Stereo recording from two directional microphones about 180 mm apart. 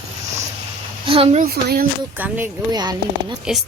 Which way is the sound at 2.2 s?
10° right (ahead or behind).